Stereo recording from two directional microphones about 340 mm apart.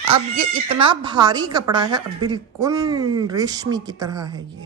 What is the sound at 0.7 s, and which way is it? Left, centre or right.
Speech, right.